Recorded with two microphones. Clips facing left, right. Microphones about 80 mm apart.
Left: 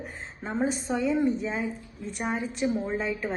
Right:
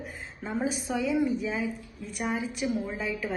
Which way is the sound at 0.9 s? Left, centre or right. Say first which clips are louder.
Left 2 dB; centre.